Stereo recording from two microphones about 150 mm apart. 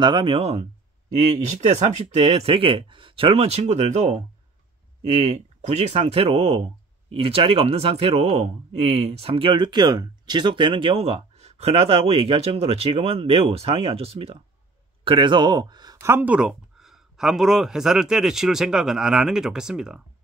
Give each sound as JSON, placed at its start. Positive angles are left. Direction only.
{"t": 0.0, "sound": "speech", "side_deg": -35}
{"t": 1.8, "sound": "speech", "side_deg": -45}
{"t": 5.2, "sound": "speech", "side_deg": -50}